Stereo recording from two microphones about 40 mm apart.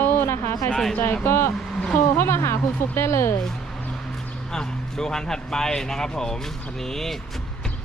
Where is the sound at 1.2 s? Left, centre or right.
Left.